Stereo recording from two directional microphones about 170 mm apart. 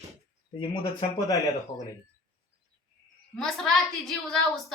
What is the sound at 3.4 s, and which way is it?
A woman's voice, centre (ahead or behind).